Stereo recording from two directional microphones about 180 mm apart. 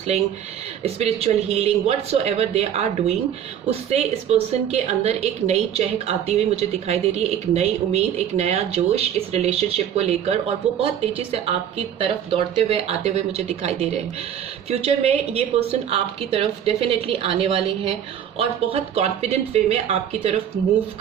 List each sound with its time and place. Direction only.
0.1 s a woman's voice: 35° right (ahead or behind)
11.9 s a woman's voice: 30° right (ahead or behind)